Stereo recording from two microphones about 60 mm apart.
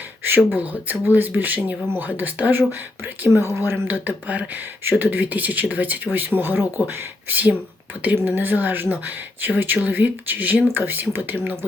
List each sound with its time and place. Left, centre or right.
0.3 s speech: right
3.2 s speech: right
3.8 s speech: right